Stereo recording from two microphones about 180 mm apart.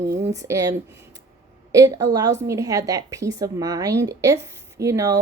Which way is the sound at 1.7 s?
20° right (ahead or behind).